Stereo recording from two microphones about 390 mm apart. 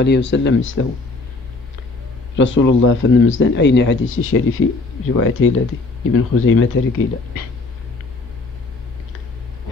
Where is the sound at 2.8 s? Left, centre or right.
Left.